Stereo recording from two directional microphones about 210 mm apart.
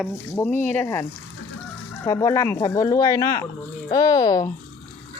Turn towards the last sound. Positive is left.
turn(degrees=20)  # may be behind; listen again after turning